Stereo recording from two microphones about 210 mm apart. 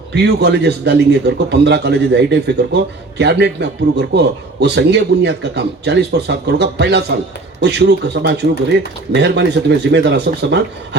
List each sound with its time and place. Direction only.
0.1 s a man's voice: 55° right (ahead or behind)